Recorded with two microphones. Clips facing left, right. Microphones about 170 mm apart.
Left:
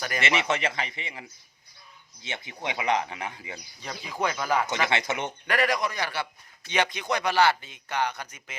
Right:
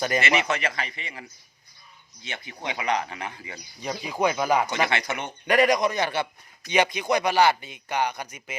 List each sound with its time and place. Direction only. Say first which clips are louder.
0.2 s speech: right 2 dB; 25° left (ahead or behind)
2.2 s speech: even; 20° left (ahead or behind)
3.8 s speech: right 5 dB; 15° right (ahead or behind)
4.9 s speech: left 1 dB; 20° left (ahead or behind)
5.5 s a man's voice: right 6 dB; 20° right (ahead or behind)